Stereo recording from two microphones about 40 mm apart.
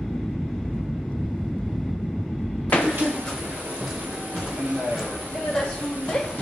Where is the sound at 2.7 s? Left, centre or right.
Left.